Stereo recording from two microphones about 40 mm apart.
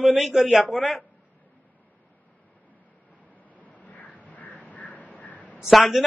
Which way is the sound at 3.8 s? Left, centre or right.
Left.